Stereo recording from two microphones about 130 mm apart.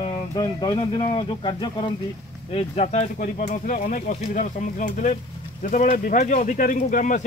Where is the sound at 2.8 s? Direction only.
65° left (ahead or behind).